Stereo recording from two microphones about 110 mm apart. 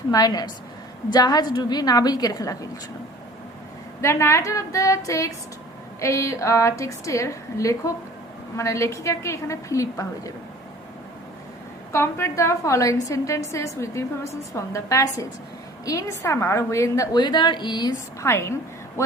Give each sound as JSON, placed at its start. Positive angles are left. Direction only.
{"t": 0.1, "sound": "a woman's voice", "side_deg": 35}
{"t": 4.0, "sound": "a woman's voice", "side_deg": 25}
{"t": 11.9, "sound": "a woman's voice", "side_deg": 25}
{"t": 18.2, "sound": "a woman's voice", "side_deg": 25}